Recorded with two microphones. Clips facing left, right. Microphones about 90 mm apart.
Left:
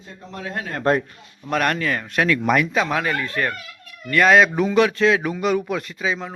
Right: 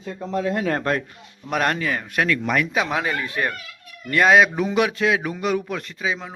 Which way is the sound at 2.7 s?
15° right (ahead or behind).